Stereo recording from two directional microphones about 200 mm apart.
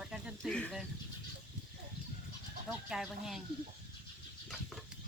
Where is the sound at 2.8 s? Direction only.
Centre (ahead or behind).